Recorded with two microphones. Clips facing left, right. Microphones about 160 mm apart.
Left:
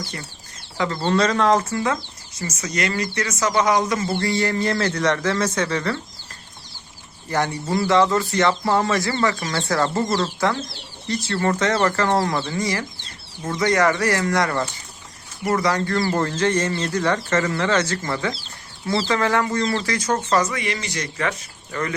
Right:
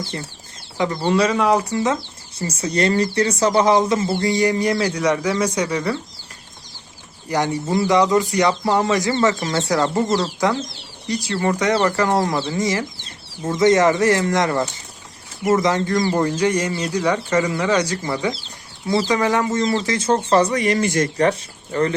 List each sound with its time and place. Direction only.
0.0 s speech: 25° right (ahead or behind)
0.8 s speech: 15° right (ahead or behind)
1.7 s speech: 20° right (ahead or behind)
2.4 s speech: 30° right (ahead or behind); by 6.0 s 10° right (ahead or behind)
7.3 s speech: 15° right (ahead or behind); by 21.2 s 50° right (ahead or behind)
21.2 s speech: 30° right (ahead or behind)